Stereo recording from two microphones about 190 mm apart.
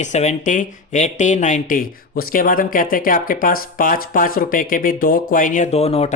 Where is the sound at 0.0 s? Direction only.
35° left (ahead or behind).